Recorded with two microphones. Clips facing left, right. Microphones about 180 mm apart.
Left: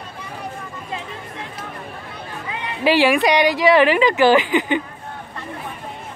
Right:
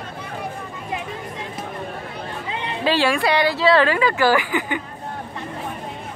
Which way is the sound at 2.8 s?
15° left (ahead or behind).